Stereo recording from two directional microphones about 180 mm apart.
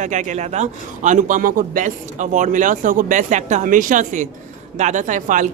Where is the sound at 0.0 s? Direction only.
40° right (ahead or behind).